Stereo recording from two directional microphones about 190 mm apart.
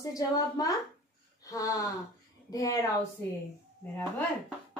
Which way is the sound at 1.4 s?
15° left (ahead or behind).